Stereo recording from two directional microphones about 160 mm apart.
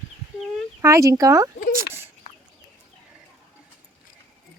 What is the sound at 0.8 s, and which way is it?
Speech, 20° right (ahead or behind).